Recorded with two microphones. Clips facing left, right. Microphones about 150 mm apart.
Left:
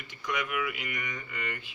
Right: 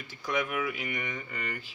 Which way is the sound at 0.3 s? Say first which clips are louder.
Right 2 dB; 30° right (ahead or behind).